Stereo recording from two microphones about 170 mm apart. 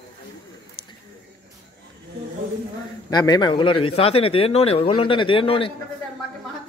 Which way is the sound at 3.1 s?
25° left (ahead or behind).